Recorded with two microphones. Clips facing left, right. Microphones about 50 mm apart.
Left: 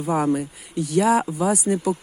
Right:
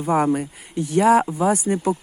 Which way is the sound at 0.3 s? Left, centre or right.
Right.